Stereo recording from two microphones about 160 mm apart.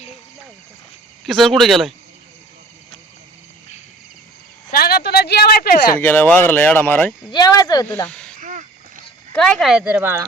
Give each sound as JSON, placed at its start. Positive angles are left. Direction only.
{"t": 1.2, "sound": "speech", "side_deg": 0}
{"t": 4.7, "sound": "speech", "side_deg": 70}
{"t": 6.0, "sound": "speech", "side_deg": 10}
{"t": 7.3, "sound": "speech", "side_deg": 25}
{"t": 8.0, "sound": "speech", "side_deg": 5}
{"t": 8.4, "sound": "rowboat", "side_deg": -50}
{"t": 9.3, "sound": "speech", "side_deg": 5}
{"t": 10.0, "sound": "speech", "side_deg": -15}